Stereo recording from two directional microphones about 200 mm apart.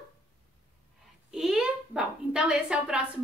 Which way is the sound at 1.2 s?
5° right (ahead or behind).